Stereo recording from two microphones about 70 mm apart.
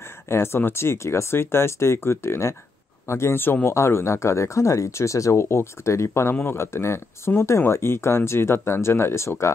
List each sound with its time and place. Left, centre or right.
0.0 s speech: left